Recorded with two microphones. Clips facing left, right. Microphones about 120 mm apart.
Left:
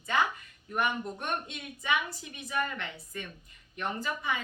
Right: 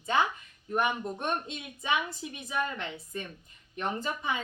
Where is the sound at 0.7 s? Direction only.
25° right (ahead or behind).